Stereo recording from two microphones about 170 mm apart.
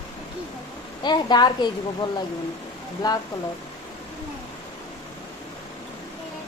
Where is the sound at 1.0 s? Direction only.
25° left (ahead or behind).